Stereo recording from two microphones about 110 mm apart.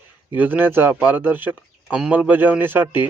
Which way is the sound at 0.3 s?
20° right (ahead or behind).